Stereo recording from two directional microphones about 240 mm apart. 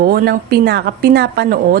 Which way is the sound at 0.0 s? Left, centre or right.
Right.